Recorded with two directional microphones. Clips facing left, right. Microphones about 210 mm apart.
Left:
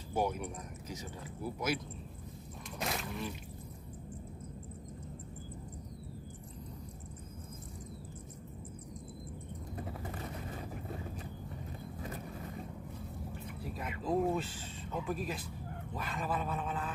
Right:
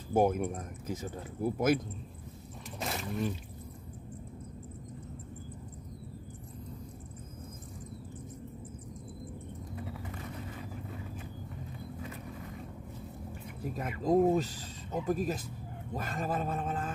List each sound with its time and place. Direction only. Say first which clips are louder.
0.1 s speech: right 7 dB; 50° right (ahead or behind)
2.8 s a sound: right 1 dB; centre (ahead or behind)
13.6 s speech: right 6 dB; 45° right (ahead or behind)